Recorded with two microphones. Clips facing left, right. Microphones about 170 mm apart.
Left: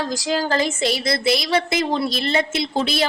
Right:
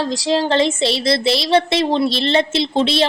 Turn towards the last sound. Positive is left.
turn(degrees=-25)  # may be behind; listen again after turning